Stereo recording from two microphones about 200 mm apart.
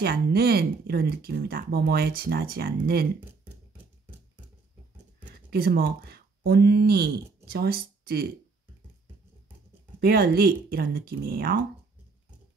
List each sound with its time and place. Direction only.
0.0 s speech: 50° right (ahead or behind)
5.5 s speech: 50° right (ahead or behind)
9.9 s speech: 50° right (ahead or behind)